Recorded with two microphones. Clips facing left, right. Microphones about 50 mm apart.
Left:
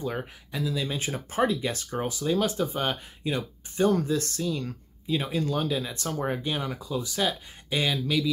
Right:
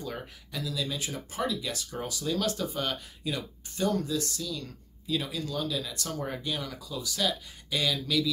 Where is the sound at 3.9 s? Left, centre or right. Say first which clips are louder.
Left 4 dB; left.